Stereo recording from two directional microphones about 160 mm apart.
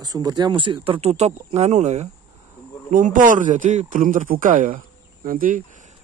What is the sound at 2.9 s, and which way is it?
A man's voice, 55° right (ahead or behind).